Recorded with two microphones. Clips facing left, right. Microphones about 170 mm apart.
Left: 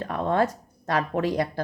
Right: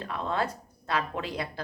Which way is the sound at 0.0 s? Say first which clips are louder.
Left 7 dB; 50° left (ahead or behind).